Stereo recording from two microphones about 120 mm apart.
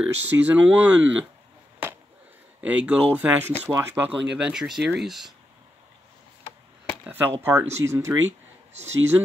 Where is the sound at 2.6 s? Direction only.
10° right (ahead or behind).